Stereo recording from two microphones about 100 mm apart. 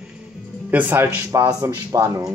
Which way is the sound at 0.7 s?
15° right (ahead or behind).